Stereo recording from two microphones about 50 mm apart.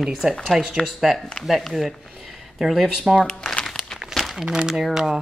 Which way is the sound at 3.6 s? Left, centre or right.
Centre.